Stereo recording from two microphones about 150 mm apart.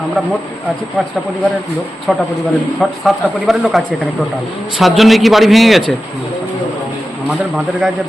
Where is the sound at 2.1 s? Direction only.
5° left (ahead or behind).